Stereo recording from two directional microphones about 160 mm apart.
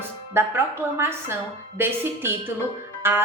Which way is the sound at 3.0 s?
15° right (ahead or behind).